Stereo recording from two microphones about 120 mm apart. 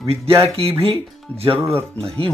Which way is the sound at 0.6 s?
55° right (ahead or behind).